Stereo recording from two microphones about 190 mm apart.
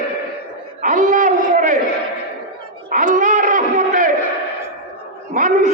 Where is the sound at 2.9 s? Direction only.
45° right (ahead or behind).